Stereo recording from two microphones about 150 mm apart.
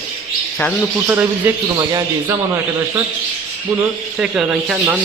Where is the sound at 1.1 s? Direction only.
15° right (ahead or behind).